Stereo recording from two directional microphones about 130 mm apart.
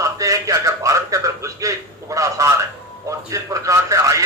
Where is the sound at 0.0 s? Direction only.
25° right (ahead or behind).